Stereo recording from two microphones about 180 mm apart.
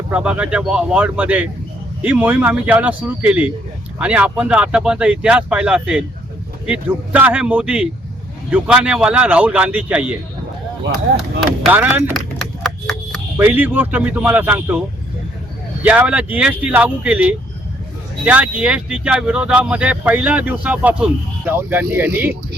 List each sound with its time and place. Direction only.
0.1 s speech: 5° right (ahead or behind)
11.7 s speech: 10° right (ahead or behind)
12.1 s a sound: centre (ahead or behind)
13.3 s speech: 10° right (ahead or behind)
15.8 s speech: 10° right (ahead or behind)